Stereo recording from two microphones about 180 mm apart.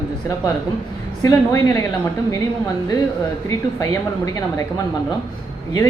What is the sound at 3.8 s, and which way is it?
Speech, 20° left (ahead or behind).